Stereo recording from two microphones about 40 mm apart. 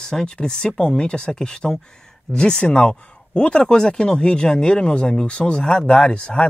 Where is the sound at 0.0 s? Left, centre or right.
Centre.